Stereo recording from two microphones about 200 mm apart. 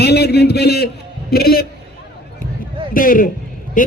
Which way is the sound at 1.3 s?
50° left (ahead or behind).